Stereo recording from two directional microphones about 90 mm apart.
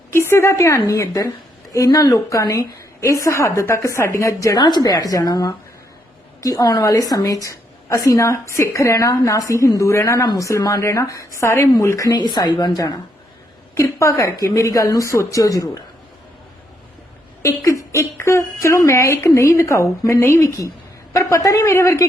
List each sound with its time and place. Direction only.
0.1 s a woman's voice: 30° left (ahead or behind)
4.6 s a woman's voice: 50° left (ahead or behind); by 12.1 s 30° left (ahead or behind)
12.1 s a woman's voice: 50° left (ahead or behind)
13.7 s a woman's voice: 35° left (ahead or behind)
17.4 s a woman's voice: 35° left (ahead or behind)